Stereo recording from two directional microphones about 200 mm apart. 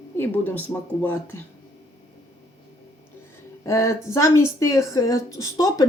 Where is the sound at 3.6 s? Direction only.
15° left (ahead or behind).